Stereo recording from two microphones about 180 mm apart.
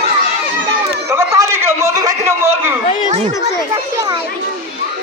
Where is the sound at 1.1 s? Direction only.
15° right (ahead or behind).